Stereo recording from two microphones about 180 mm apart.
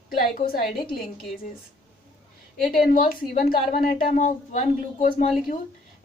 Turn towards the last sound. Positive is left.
turn(degrees=45)  # may be behind; listen again after turning